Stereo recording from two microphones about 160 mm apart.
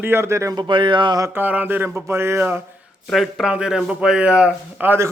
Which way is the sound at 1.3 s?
10° right (ahead or behind).